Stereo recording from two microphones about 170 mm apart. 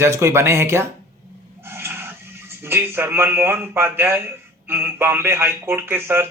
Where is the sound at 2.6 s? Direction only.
15° right (ahead or behind).